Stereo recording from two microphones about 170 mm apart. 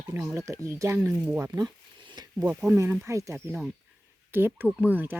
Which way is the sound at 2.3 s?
10° right (ahead or behind).